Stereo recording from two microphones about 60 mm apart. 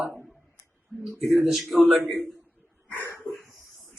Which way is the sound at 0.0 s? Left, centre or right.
Centre.